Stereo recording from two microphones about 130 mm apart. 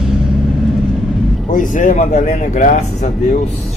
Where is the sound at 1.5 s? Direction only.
85° left; by 2.8 s 70° left (ahead or behind).